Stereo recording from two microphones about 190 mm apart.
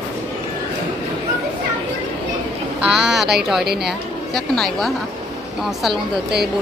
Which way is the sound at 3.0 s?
5° right (ahead or behind).